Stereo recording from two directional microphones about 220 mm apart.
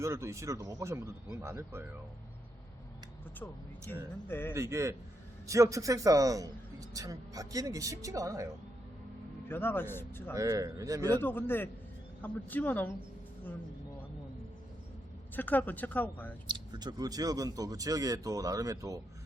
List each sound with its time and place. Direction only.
0.0 s a man's voice: 15° right (ahead or behind)
4.3 s speech: 10° left (ahead or behind)
4.5 s a man's voice: 15° right (ahead or behind)
9.5 s speech: 10° left (ahead or behind)
10.3 s a man's voice: 15° right (ahead or behind)
11.1 s speech: 10° left (ahead or behind)
15.4 s speech: 10° left (ahead or behind)
16.5 s a man's voice: 20° right (ahead or behind)